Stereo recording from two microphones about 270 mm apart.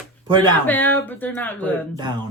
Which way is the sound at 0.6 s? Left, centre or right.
Centre.